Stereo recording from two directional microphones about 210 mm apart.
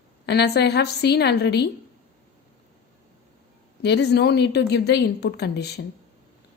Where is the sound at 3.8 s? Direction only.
55° left (ahead or behind).